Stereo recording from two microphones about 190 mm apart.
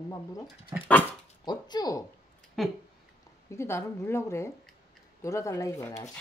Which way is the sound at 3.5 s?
15° left (ahead or behind).